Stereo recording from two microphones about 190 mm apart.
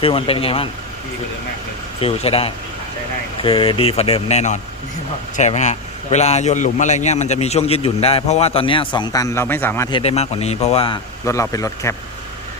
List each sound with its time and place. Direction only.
0.0 s speech: 30° left (ahead or behind)
2.0 s a man's voice: 30° left (ahead or behind); by 9.9 s 10° left (ahead or behind)
9.9 s a man's voice: 30° left (ahead or behind)
11.3 s a man's voice: 15° left (ahead or behind)